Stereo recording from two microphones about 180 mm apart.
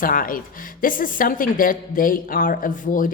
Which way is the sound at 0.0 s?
50° left (ahead or behind).